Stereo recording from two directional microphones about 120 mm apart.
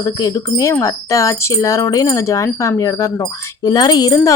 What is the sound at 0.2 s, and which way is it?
Speech, 35° left (ahead or behind).